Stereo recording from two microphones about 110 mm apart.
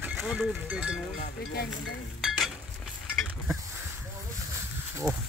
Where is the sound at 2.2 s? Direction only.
5° right (ahead or behind).